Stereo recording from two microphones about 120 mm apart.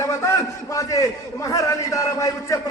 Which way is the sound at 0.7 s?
30° left (ahead or behind).